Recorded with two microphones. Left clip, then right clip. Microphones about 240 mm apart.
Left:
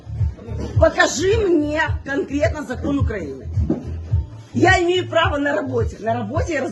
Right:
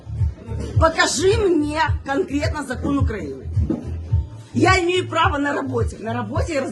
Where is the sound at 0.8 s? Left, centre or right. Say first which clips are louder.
Left 1 dB; centre.